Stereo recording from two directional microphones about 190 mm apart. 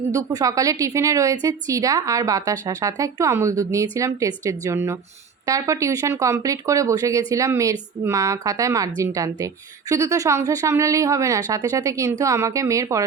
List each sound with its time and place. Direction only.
0.1 s a woman's voice: 20° right (ahead or behind)